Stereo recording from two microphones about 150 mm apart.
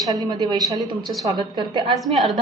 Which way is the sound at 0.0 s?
25° right (ahead or behind).